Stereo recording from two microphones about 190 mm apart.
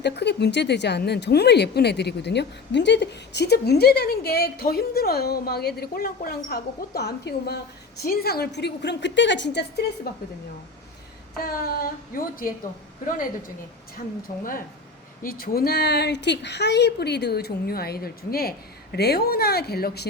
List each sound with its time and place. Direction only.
0.0 s speech: 60° left (ahead or behind)
11.3 s speech: 50° left (ahead or behind)
14.3 s speech: 45° left (ahead or behind)